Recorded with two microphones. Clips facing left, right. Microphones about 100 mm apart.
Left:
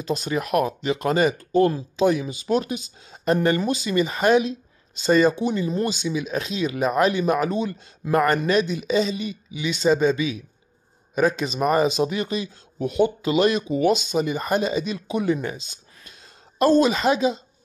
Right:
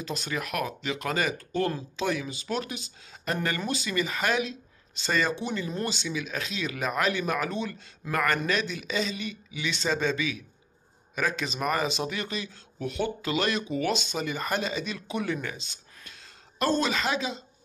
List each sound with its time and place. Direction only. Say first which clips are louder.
0.0 s speech: left 8 dB; 20° left (ahead or behind)